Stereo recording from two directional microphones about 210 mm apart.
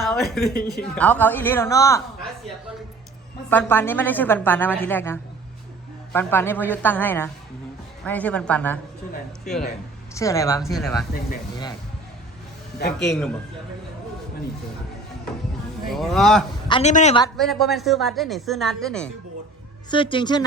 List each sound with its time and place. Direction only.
0.0 s a woman's voice: centre (ahead or behind)
3.5 s a woman's voice: 10° left (ahead or behind)
10.2 s a woman's voice: 15° left (ahead or behind)
10.6 s speech: centre (ahead or behind)
13.0 s speech: 5° left (ahead or behind)
15.9 s speech: centre (ahead or behind)
16.6 s a woman's voice: 25° left (ahead or behind)
16.9 s a man's voice: 35° left (ahead or behind)
17.3 s speech: centre (ahead or behind)
19.9 s speech: 25° left (ahead or behind)